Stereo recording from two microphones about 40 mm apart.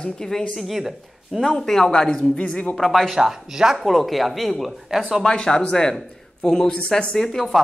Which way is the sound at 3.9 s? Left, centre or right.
Centre.